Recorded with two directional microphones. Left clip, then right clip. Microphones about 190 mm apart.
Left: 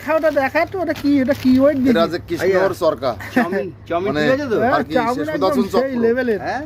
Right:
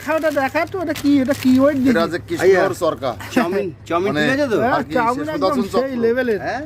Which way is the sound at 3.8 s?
55° right (ahead or behind).